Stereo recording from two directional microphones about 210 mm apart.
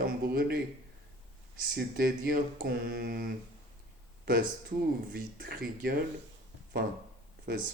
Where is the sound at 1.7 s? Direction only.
45° right (ahead or behind).